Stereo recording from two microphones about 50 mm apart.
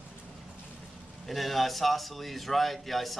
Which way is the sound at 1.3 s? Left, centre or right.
Centre.